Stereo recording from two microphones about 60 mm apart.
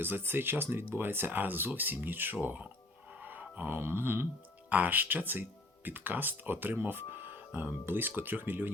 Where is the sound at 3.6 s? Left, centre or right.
Right.